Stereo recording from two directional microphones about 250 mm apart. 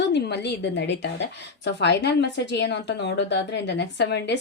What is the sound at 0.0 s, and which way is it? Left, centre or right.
A woman's voice, left.